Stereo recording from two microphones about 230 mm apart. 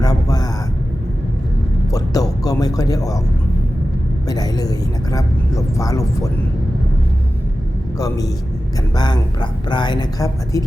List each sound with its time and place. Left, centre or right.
0.0 s a sound: centre
1.9 s speech: centre
4.3 s speech: centre
7.9 s a woman's voice: centre